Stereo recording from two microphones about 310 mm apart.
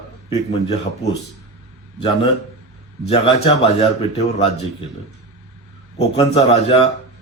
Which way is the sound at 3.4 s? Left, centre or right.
Centre.